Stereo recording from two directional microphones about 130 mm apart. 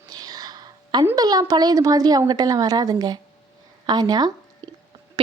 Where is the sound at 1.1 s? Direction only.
30° right (ahead or behind).